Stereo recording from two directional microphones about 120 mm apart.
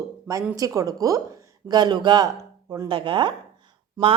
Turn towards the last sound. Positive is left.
turn(degrees=-30)  # may be behind; listen again after turning